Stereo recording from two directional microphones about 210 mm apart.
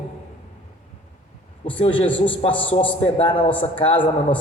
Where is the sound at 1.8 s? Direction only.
25° left (ahead or behind).